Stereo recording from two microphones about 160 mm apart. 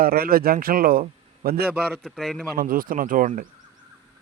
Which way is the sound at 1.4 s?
75° right (ahead or behind).